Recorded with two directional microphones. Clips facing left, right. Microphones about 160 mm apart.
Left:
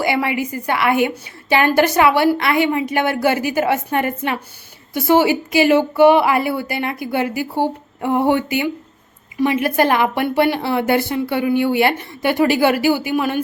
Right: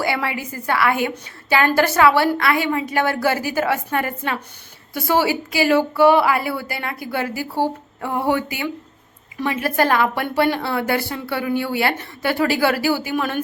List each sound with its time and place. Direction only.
0.0 s speech: 15° left (ahead or behind)